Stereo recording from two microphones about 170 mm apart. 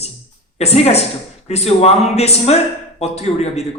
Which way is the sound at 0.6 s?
40° left (ahead or behind).